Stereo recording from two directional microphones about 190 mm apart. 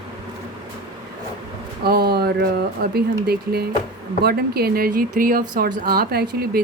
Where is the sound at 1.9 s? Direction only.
55° right (ahead or behind).